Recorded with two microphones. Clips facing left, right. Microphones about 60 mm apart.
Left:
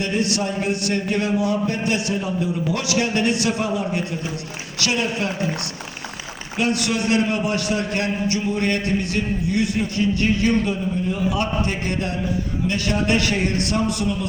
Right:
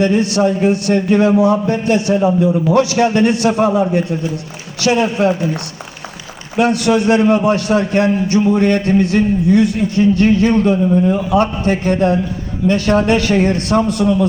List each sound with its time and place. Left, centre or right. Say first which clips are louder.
0.0 s a man's voice: right 9 dB; right
4.8 s a man's voice: right 9 dB; right
6.6 s a man's voice: right 8 dB; right
10.6 s a man's voice: right 11 dB; right
11.3 s a man's voice: right 8 dB; right